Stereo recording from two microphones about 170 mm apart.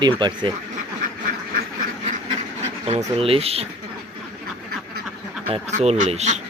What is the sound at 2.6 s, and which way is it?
Speech, 40° right (ahead or behind).